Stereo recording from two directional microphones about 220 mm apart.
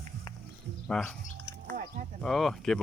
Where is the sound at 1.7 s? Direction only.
35° right (ahead or behind).